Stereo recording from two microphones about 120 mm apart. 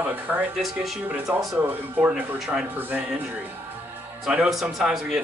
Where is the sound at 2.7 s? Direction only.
15° right (ahead or behind).